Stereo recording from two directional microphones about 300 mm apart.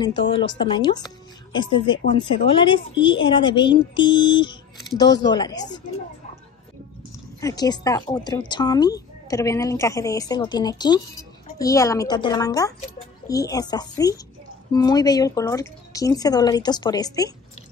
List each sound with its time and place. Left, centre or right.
0.0 s speech: centre
7.3 s speech: centre